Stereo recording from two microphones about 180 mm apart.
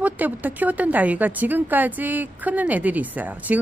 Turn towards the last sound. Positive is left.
turn(degrees=-10)  # may be behind; listen again after turning